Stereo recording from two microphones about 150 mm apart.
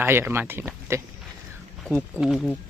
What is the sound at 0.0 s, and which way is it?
Speech, 15° right (ahead or behind).